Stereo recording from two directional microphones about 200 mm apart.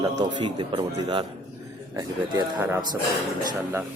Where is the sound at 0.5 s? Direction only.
25° right (ahead or behind).